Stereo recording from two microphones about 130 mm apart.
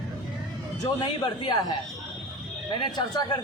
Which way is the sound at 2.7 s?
35° left (ahead or behind).